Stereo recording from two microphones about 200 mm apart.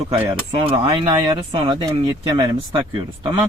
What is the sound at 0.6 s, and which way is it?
Speech, 25° right (ahead or behind).